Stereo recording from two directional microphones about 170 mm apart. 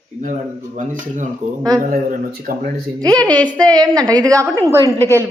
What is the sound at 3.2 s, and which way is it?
Speech, 10° left (ahead or behind).